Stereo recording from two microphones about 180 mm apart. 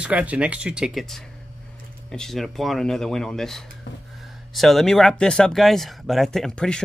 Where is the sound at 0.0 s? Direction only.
10° right (ahead or behind).